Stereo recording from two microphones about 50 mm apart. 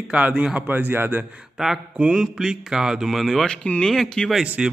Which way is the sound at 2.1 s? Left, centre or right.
Centre.